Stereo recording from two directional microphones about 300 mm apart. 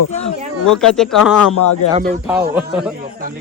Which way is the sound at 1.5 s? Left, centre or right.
Left.